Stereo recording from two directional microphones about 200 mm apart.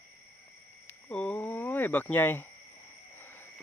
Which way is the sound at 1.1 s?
5° left (ahead or behind).